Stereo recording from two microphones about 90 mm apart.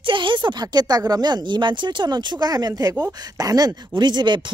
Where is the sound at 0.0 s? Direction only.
65° right (ahead or behind).